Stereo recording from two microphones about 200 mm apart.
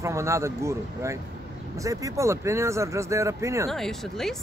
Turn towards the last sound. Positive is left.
turn(degrees=0)  # may be behind; listen again after turning